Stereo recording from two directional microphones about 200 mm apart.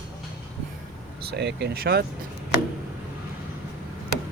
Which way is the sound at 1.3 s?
55° right (ahead or behind).